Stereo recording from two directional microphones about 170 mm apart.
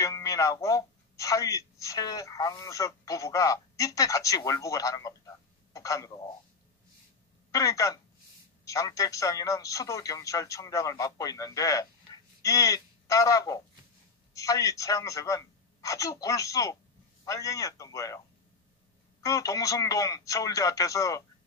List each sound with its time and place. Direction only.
0.0 s a woman's voice: 20° left (ahead or behind)
7.5 s a man's voice: 20° left (ahead or behind)
19.2 s a man's voice: 20° left (ahead or behind)